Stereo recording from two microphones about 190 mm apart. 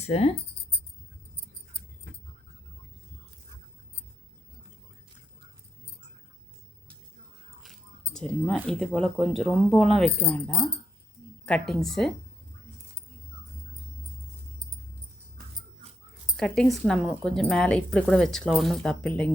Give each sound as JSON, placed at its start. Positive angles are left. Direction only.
{"t": 0.0, "sound": "speech", "side_deg": 30}
{"t": 8.1, "sound": "a woman's voice", "side_deg": 5}
{"t": 16.4, "sound": "a woman's voice", "side_deg": 5}